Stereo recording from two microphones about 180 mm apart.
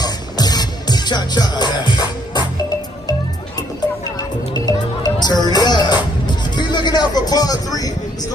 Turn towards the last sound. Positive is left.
turn(degrees=20)  # may be behind; listen again after turning